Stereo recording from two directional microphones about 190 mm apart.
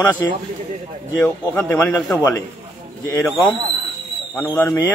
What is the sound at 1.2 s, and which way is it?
Speech, 10° left (ahead or behind).